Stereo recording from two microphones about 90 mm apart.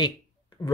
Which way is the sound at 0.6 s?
45° left (ahead or behind).